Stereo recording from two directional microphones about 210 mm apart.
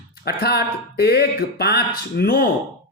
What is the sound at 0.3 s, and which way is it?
Speech, 50° left (ahead or behind).